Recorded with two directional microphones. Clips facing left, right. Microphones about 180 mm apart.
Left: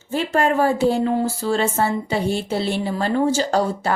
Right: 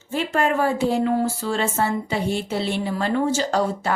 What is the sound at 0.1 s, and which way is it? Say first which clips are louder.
Speech: left 2 dB; 35° left (ahead or behind).